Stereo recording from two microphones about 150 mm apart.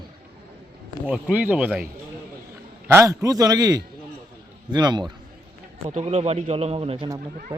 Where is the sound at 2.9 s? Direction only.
20° right (ahead or behind).